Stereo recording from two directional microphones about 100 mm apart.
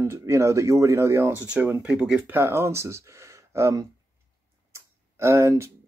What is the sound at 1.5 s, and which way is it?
Speech, 15° right (ahead or behind).